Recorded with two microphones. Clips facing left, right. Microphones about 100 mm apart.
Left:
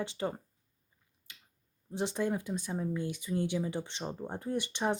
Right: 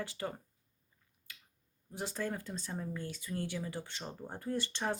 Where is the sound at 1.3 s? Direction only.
20° left (ahead or behind).